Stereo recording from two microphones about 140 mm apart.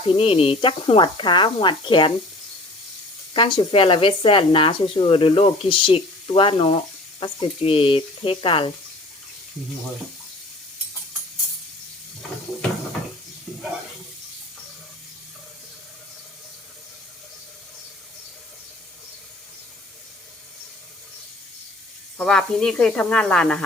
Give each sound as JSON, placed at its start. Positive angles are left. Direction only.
{"t": 0.1, "sound": "speech", "side_deg": 40}
{"t": 3.3, "sound": "speech", "side_deg": 35}
{"t": 22.2, "sound": "speech", "side_deg": 5}